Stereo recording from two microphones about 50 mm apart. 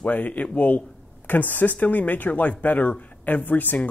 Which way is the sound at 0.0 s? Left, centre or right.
Left.